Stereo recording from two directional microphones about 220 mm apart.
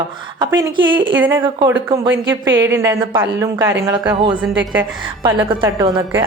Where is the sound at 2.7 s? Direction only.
10° right (ahead or behind).